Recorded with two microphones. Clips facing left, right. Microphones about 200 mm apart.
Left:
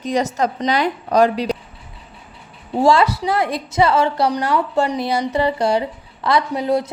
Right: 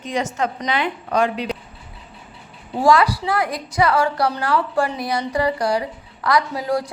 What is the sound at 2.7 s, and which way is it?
A woman's voice, 25° left (ahead or behind).